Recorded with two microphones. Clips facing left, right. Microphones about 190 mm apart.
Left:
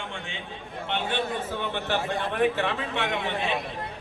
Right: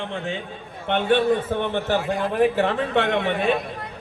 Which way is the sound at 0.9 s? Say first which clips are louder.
Right 10 dB; 55° right (ahead or behind).